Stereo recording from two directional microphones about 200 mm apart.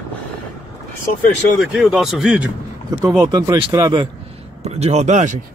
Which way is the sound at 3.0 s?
15° right (ahead or behind).